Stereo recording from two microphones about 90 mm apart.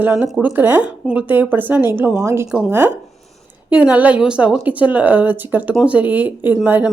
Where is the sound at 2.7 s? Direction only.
20° right (ahead or behind).